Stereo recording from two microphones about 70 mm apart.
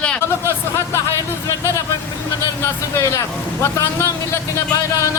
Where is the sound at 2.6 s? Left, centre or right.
Left.